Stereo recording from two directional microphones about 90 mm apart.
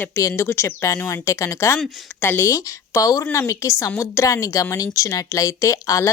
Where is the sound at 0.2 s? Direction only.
35° left (ahead or behind).